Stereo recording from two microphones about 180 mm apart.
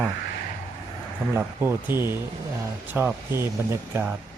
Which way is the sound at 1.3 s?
15° right (ahead or behind).